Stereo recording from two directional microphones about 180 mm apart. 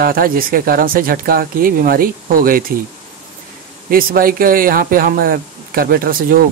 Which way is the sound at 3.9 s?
55° right (ahead or behind).